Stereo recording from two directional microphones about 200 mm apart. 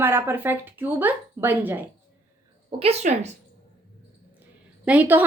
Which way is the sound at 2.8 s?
35° right (ahead or behind).